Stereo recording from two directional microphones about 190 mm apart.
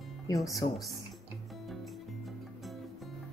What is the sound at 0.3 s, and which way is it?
Speech, 15° left (ahead or behind).